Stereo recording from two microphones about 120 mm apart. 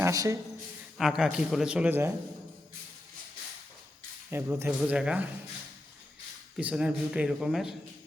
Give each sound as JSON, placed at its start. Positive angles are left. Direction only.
{"t": 0.0, "sound": "a man's voice", "side_deg": -25}
{"t": 0.9, "sound": "a man's voice", "side_deg": -5}
{"t": 4.3, "sound": "speech", "side_deg": -20}
{"t": 6.6, "sound": "speech", "side_deg": -10}